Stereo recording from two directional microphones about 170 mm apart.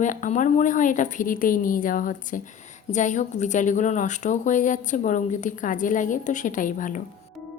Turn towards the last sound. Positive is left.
turn(degrees=50)  # may be behind; listen again after turning